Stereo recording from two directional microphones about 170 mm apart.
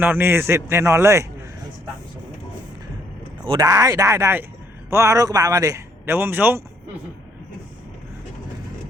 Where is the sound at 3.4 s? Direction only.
20° right (ahead or behind).